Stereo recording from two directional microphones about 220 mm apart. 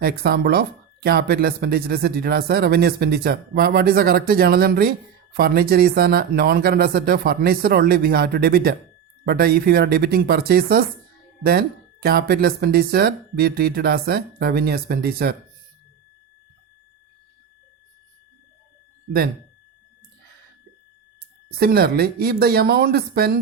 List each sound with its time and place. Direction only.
0.0 s a man's voice: 45° right (ahead or behind)
21.6 s a man's voice: 45° right (ahead or behind)